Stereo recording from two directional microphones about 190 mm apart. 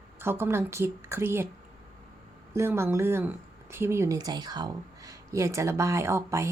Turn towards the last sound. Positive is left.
turn(degrees=-15)  # may be behind; listen again after turning